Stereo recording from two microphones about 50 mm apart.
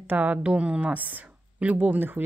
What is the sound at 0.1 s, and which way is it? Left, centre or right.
A woman's voice, right.